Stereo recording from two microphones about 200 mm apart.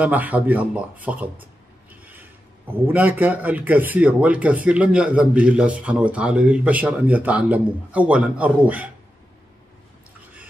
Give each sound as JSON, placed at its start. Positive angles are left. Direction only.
{"t": 0.0, "sound": "a man's voice", "side_deg": -10}